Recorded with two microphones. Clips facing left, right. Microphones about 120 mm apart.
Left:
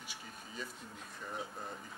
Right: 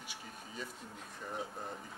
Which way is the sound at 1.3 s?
35° right (ahead or behind).